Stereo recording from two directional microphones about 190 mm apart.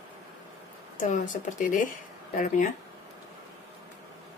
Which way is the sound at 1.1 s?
40° left (ahead or behind).